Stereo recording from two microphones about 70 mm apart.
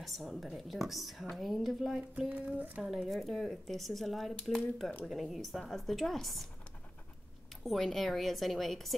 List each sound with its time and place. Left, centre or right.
0.0 s speech: centre
2.1 s speech: centre
2.8 s speech: centre
7.6 s speech: centre